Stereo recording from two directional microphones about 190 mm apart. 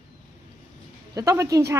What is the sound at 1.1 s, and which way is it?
Speech, 15° right (ahead or behind).